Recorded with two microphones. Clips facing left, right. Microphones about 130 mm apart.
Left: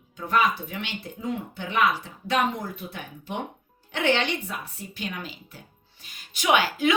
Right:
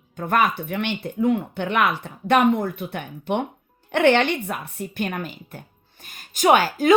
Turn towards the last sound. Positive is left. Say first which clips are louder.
# right 5 dB
turn(degrees=-45)  # may be behind; listen again after turning